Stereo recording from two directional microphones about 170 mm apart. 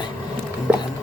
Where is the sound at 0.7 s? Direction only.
10° right (ahead or behind).